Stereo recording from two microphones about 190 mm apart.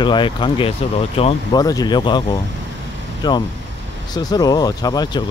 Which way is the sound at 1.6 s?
20° left (ahead or behind).